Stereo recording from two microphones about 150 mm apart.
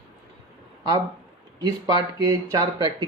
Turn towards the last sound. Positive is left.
turn(degrees=-25)  # may be behind; listen again after turning